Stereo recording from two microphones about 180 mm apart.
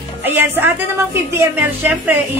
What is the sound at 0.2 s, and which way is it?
A woman's voice, 10° right (ahead or behind).